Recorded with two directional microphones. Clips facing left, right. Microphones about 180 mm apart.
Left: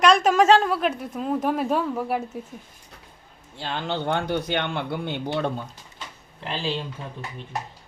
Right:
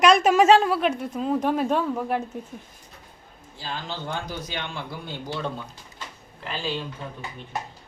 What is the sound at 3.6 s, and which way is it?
A man's voice, 65° left (ahead or behind).